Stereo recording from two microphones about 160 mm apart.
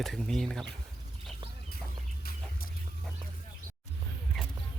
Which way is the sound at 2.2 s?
65° left (ahead or behind).